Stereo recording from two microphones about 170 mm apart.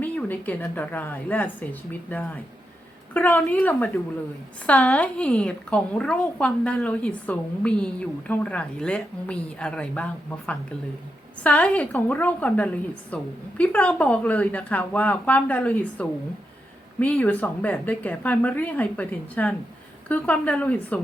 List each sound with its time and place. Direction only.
0.0 s a woman's voice: 10° left (ahead or behind)